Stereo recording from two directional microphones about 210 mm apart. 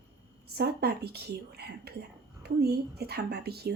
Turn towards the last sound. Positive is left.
turn(degrees=-50)  # may be behind; listen again after turning